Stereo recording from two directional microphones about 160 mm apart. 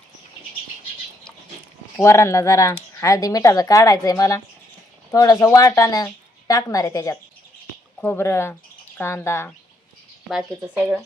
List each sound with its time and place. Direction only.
2.0 s speech: 15° left (ahead or behind)